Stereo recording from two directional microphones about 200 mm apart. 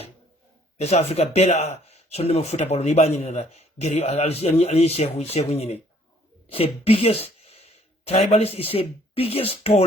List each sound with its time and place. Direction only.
0.8 s speech: 30° left (ahead or behind)